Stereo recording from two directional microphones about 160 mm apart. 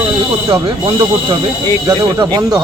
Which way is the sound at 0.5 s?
30° right (ahead or behind).